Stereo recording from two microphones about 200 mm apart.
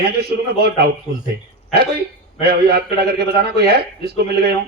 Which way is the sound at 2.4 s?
55° right (ahead or behind).